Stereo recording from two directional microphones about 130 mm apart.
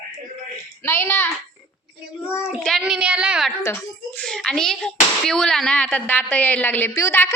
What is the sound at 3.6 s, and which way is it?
Speech, 15° left (ahead or behind).